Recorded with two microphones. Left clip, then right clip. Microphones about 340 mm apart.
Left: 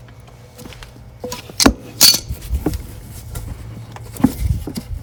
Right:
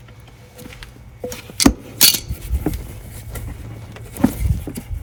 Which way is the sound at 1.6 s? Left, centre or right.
Left.